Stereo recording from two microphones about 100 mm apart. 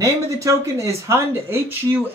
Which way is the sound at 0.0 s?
30° right (ahead or behind).